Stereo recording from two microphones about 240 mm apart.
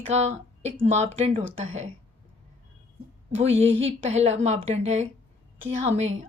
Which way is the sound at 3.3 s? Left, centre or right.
Right.